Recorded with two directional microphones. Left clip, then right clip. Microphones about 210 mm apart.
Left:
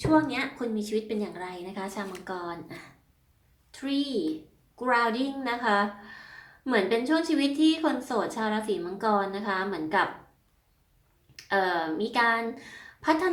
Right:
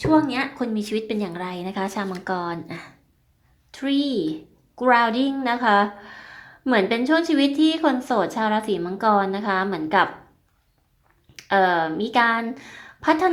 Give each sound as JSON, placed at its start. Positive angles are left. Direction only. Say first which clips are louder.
{"t": 0.0, "sound": "a woman's voice", "louder": "right 5 dB", "side_deg": -35}
{"t": 11.4, "sound": "a woman's voice", "louder": "right 7 dB", "side_deg": -35}